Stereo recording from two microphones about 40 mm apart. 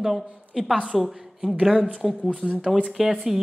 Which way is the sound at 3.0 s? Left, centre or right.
Right.